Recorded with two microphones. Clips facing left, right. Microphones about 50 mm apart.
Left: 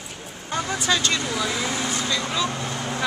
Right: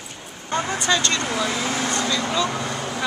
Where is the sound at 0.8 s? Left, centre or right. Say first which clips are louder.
Even; centre.